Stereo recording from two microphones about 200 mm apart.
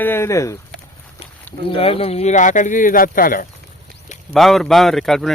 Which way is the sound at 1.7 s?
30° left (ahead or behind).